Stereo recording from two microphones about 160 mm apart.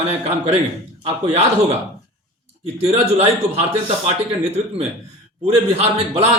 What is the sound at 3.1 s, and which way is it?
Speech, 40° right (ahead or behind).